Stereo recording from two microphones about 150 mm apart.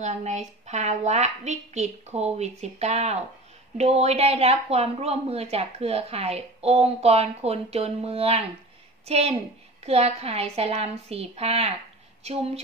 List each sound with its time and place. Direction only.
0.0 s a woman's voice: 50° right (ahead or behind)